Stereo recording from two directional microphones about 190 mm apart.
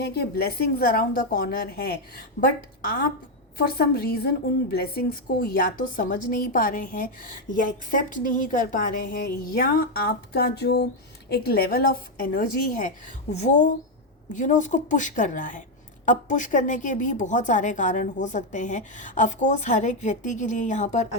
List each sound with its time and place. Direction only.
0.0 s a woman's voice: 60° left (ahead or behind)
3.6 s a woman's voice: 55° left (ahead or behind); by 21.1 s 35° left (ahead or behind)